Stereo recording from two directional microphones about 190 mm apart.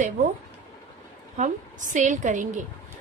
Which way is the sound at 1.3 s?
40° right (ahead or behind).